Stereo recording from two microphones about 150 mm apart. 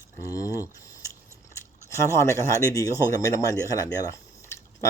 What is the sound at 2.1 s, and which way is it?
Speech, 20° left (ahead or behind).